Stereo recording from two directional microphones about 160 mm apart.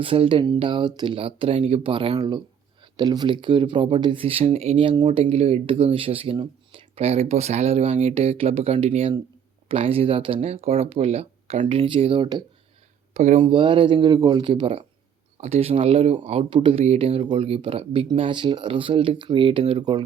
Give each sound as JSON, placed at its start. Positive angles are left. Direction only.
{"t": 0.0, "sound": "speech", "side_deg": -35}
{"t": 13.1, "sound": "speech", "side_deg": -50}
{"t": 13.4, "sound": "speech", "side_deg": -30}